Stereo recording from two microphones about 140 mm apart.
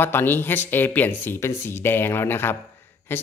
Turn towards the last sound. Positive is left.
turn(degrees=15)  # may be behind; listen again after turning